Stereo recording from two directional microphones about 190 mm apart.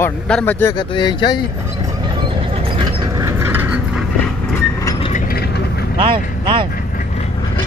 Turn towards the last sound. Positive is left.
turn(degrees=-25)  # may be behind; listen again after turning